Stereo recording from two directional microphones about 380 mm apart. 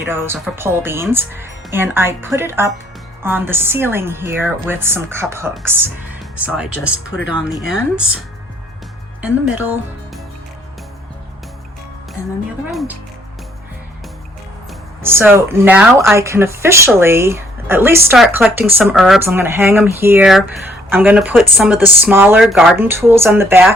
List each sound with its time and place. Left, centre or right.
0.1 s speech: centre
9.2 s speech: centre
12.6 s speech: centre
15.0 s speech: centre